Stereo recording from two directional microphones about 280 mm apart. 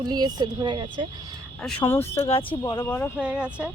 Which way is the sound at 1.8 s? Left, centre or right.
Centre.